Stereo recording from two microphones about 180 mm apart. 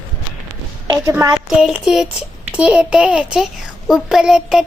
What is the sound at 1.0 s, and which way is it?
Speech, 15° right (ahead or behind).